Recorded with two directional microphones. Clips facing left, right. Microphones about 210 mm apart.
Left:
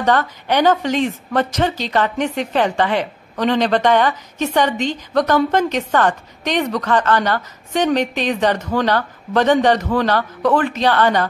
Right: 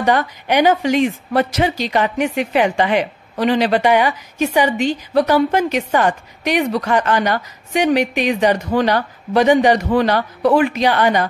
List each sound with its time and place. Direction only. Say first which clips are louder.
0.0 s a woman's voice: right 1 dB; 10° right (ahead or behind)